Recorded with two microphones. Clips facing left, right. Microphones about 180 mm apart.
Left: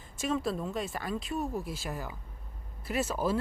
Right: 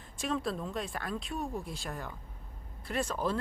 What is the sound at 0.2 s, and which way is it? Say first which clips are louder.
Speech: left 2 dB; centre (ahead or behind).